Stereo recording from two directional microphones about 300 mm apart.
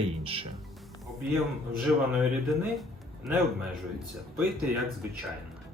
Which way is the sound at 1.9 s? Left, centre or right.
Centre.